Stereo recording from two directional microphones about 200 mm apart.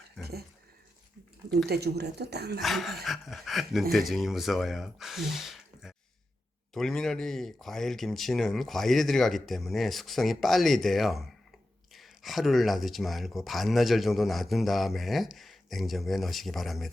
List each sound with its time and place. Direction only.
0.2 s a sound: 50° right (ahead or behind)
1.6 s a woman's voice: 55° right (ahead or behind)
2.6 s speech: centre (ahead or behind)